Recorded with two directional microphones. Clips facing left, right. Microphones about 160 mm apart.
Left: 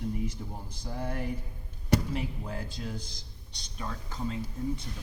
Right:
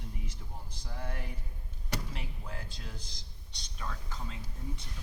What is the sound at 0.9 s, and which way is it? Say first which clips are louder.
Speech: left 7 dB; 40° left (ahead or behind).